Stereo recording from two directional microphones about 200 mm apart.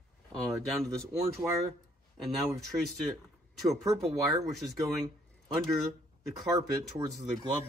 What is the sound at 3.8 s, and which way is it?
Speech, 15° right (ahead or behind).